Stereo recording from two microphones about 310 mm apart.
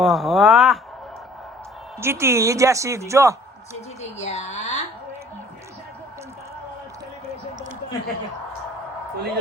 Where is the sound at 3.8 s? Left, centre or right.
Left.